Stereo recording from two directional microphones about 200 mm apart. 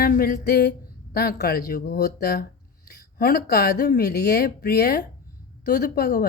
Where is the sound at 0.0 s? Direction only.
50° left (ahead or behind).